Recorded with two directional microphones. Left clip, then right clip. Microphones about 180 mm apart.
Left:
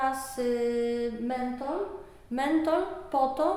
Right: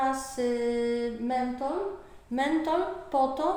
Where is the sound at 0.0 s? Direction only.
15° left (ahead or behind).